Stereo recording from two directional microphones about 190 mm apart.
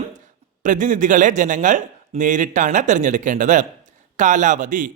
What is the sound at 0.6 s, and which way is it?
A man's voice, 40° right (ahead or behind).